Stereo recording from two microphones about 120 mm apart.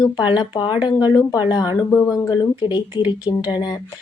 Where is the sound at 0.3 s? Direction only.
40° left (ahead or behind).